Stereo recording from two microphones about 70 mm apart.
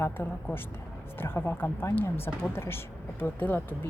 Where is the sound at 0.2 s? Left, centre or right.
Left.